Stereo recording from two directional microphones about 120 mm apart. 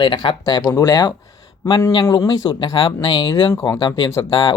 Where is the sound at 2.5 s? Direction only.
40° left (ahead or behind).